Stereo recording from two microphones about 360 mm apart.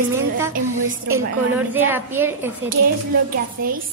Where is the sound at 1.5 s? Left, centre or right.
Centre.